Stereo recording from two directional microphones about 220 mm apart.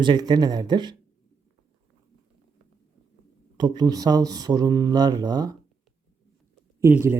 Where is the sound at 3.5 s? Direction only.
20° right (ahead or behind).